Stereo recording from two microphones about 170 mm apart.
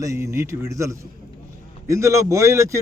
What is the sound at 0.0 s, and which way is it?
A man's voice, 15° right (ahead or behind).